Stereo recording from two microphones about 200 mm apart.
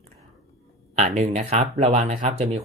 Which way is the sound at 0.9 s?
35° right (ahead or behind).